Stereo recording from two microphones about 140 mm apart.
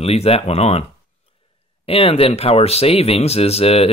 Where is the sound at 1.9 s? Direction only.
45° left (ahead or behind).